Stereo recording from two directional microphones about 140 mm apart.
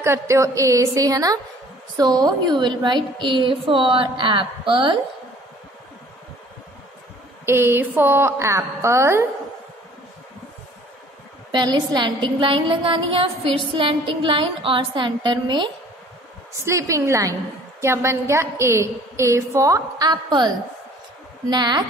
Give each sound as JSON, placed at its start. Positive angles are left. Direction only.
{"t": 0.0, "sound": "a woman's voice", "side_deg": -20}
{"t": 7.4, "sound": "a woman's voice", "side_deg": -15}
{"t": 11.5, "sound": "a woman's voice", "side_deg": -30}
{"t": 16.6, "sound": "a woman's voice", "side_deg": -20}